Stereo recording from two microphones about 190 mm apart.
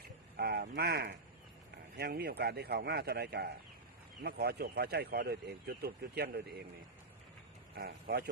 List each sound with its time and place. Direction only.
0.3 s speech: 60° right (ahead or behind)
7.8 s speech: 55° right (ahead or behind)